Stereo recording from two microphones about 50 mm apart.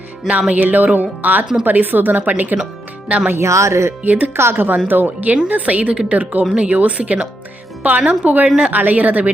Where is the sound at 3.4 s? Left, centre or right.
Right.